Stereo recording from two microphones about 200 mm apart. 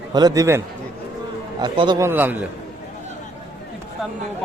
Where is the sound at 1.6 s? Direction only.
20° right (ahead or behind).